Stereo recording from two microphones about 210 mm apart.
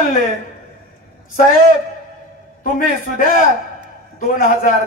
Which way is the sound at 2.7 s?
45° left (ahead or behind).